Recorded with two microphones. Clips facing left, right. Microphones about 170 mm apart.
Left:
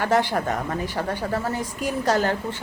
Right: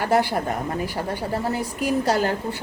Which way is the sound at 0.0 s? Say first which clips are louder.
Right 1 dB; 10° right (ahead or behind).